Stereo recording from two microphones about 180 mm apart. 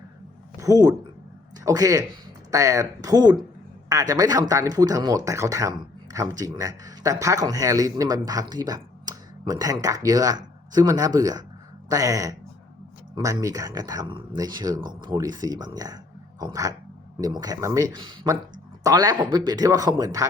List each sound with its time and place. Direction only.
0.6 s speech: 20° right (ahead or behind)